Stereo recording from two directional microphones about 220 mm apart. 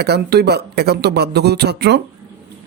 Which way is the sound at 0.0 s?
50° right (ahead or behind).